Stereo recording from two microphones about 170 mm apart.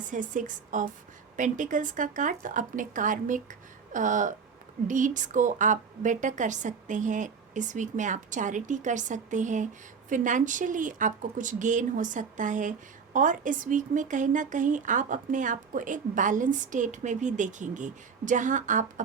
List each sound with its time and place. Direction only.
0.1 s speech: 50° right (ahead or behind)